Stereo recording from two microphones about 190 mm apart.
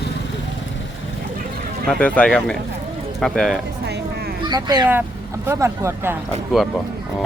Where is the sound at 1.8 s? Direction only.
5° left (ahead or behind).